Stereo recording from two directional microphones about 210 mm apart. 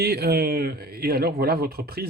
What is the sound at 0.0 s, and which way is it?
Speech, 50° right (ahead or behind).